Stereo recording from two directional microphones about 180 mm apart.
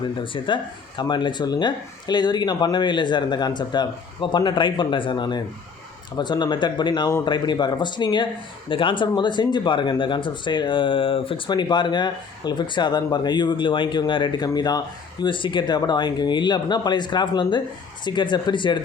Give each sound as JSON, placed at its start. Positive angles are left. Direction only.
{"t": 0.3, "sound": "speech", "side_deg": 25}